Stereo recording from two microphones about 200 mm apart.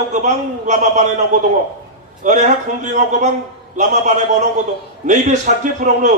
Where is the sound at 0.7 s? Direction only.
35° right (ahead or behind).